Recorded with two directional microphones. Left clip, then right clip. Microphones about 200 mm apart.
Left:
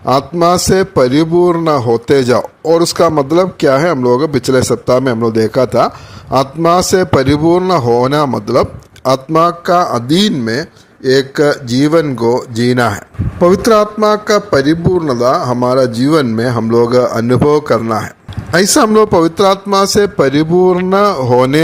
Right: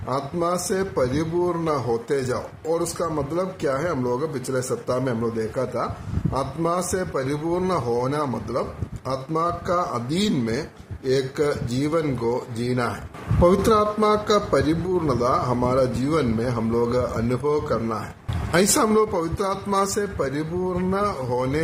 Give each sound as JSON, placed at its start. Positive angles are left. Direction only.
{"t": 0.0, "sound": "a man's voice", "side_deg": 45}